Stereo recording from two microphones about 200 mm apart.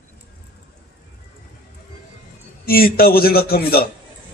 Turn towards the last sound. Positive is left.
turn(degrees=50)  # may be behind; listen again after turning